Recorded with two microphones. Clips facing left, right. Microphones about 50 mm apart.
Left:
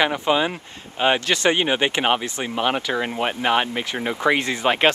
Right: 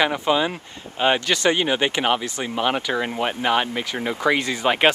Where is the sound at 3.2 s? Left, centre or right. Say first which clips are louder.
Left 1 dB; centre.